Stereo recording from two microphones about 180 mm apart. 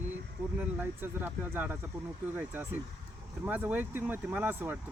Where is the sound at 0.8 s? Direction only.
10° right (ahead or behind).